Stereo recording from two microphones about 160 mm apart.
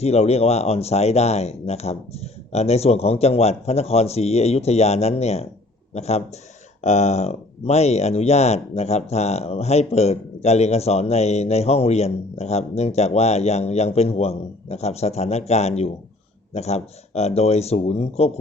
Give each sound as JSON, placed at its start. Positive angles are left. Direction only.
{"t": 0.0, "sound": "speech", "side_deg": 40}